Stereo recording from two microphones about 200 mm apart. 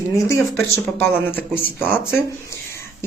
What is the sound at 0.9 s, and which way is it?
A woman's voice, 10° left (ahead or behind).